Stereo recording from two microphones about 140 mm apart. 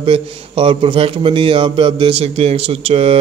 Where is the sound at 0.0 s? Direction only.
40° right (ahead or behind).